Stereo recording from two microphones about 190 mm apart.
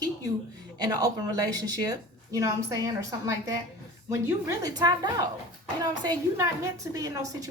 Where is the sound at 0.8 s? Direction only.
20° right (ahead or behind).